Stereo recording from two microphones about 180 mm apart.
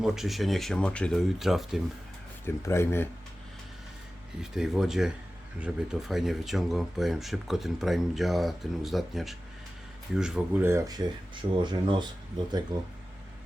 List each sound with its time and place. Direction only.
0.0 s speech: centre (ahead or behind)
2.4 s speech: 15° left (ahead or behind)
4.5 s speech: 5° right (ahead or behind); by 12.0 s 25° right (ahead or behind)